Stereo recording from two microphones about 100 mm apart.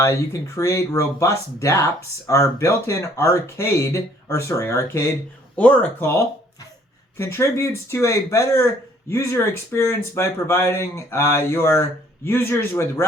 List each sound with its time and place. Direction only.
0.0 s speech: 30° left (ahead or behind)